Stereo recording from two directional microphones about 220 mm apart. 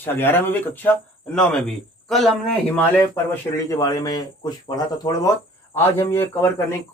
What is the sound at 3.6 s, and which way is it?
Speech, 15° left (ahead or behind).